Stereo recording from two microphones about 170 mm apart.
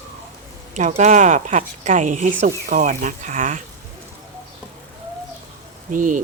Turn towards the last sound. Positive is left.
turn(degrees=-50)  # may be behind; listen again after turning